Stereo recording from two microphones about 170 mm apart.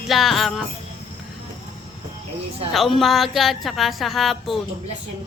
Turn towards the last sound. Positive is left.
turn(degrees=0)  # may be behind; listen again after turning